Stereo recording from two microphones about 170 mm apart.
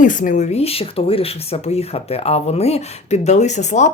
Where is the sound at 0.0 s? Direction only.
50° left (ahead or behind).